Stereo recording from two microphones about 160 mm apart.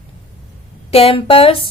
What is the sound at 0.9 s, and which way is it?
Speech, 35° left (ahead or behind).